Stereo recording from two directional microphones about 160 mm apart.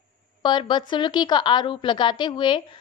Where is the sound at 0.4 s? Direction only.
30° left (ahead or behind).